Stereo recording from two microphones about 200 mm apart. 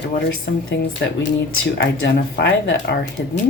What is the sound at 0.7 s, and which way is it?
Speech, 60° left (ahead or behind).